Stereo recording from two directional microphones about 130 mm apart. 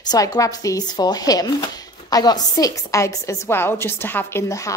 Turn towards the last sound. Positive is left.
turn(degrees=20)  # may be behind; listen again after turning